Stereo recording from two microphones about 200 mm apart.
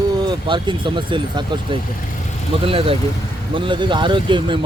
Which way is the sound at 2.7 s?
30° right (ahead or behind).